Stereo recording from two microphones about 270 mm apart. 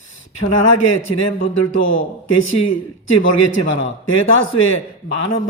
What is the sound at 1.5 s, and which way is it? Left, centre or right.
Speech, left.